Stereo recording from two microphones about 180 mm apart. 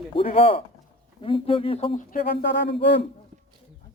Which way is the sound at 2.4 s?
75° left (ahead or behind).